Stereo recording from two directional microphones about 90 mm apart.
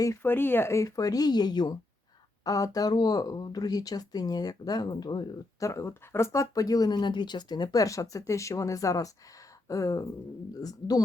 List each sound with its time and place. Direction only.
0.2 s speech: 25° left (ahead or behind); by 5.2 s 50° left (ahead or behind)
5.5 s speech: 35° left (ahead or behind)